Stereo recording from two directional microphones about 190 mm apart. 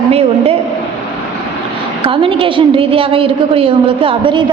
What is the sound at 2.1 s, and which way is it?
A woman's voice, 30° right (ahead or behind).